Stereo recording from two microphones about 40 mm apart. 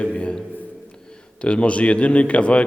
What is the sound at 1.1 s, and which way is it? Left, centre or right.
A man's voice, left.